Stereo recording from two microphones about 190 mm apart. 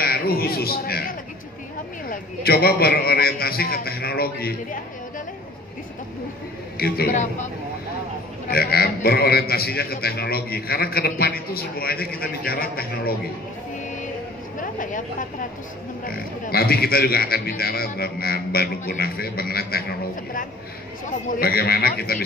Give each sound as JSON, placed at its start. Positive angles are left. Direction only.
{"t": 0.0, "sound": "a man's voice", "side_deg": 55}
{"t": 6.8, "sound": "speech", "side_deg": 55}
{"t": 8.5, "sound": "a man's voice", "side_deg": 55}
{"t": 14.6, "sound": "a man's voice", "side_deg": 45}
{"t": 21.3, "sound": "speech", "side_deg": 55}